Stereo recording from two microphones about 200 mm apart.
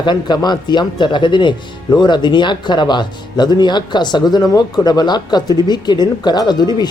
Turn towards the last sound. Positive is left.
turn(degrees=20)  # may be behind; listen again after turning